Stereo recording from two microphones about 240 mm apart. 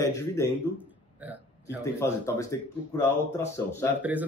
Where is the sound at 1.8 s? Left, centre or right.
Centre.